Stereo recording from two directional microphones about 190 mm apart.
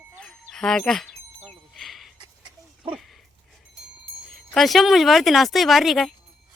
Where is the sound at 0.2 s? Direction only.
5° left (ahead or behind).